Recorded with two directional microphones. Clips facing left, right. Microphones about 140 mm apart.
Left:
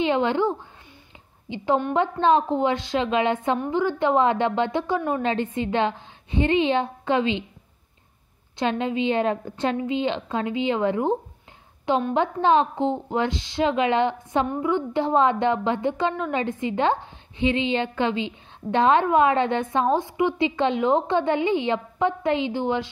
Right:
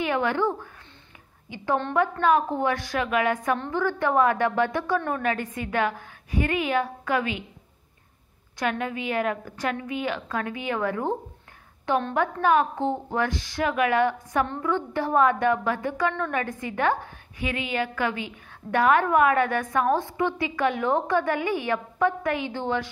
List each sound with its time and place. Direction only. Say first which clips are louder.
0.0 s a woman's voice: left 3 dB; 20° left (ahead or behind)
8.5 s a woman's voice: left 4 dB; 25° left (ahead or behind)